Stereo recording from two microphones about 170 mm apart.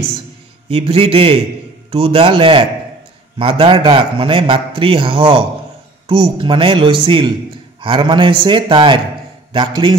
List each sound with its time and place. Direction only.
0.7 s a man's voice: 35° right (ahead or behind)